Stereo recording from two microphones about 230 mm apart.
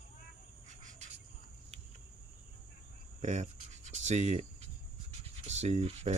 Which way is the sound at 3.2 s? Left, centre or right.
Right.